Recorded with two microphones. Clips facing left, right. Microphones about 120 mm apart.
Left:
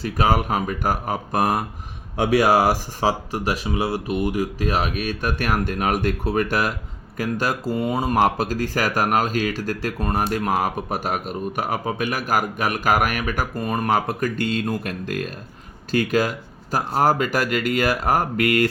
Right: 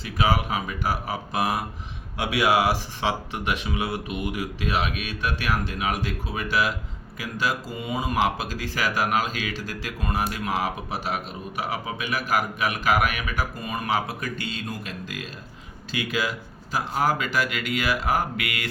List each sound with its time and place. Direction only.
0.0 s speech: 45° left (ahead or behind)